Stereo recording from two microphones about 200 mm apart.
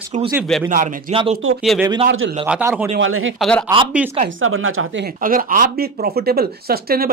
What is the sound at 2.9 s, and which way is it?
Speech, 80° right.